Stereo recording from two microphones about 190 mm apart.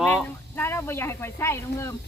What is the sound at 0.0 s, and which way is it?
Speech, 5° left (ahead or behind).